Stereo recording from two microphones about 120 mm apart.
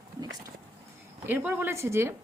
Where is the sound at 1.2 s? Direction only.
15° right (ahead or behind).